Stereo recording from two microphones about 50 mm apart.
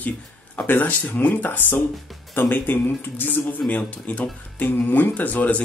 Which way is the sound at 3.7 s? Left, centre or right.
Left.